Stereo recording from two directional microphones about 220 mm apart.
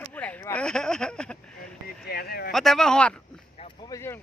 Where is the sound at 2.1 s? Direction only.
45° left (ahead or behind).